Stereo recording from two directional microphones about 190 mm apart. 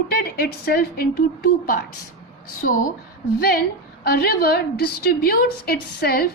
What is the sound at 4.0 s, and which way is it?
A woman's voice, 55° left (ahead or behind).